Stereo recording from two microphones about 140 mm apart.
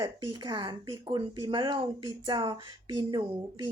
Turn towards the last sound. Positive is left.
turn(degrees=-35)  # may be behind; listen again after turning